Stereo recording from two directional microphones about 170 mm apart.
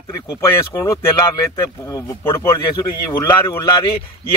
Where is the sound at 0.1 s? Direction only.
15° left (ahead or behind).